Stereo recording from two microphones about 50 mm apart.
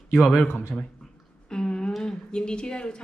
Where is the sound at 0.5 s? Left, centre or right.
Left.